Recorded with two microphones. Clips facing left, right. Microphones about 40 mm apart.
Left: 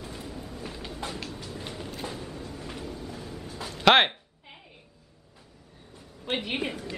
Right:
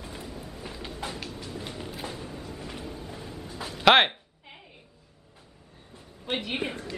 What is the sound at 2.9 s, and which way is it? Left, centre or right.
Vehicle, centre.